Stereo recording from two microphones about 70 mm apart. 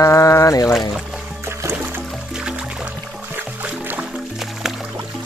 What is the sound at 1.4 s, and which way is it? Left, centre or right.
Music, right.